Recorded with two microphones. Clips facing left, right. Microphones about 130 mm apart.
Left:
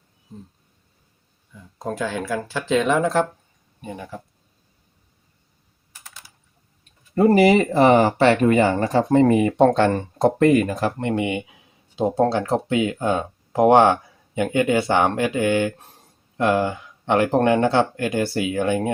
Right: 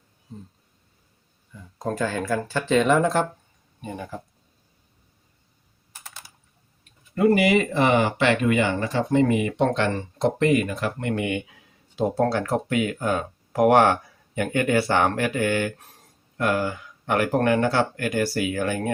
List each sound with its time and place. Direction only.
1.5 s speech: 5° left (ahead or behind)
7.2 s speech: 35° left (ahead or behind)